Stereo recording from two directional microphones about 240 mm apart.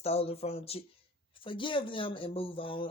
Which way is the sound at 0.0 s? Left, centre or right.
Left.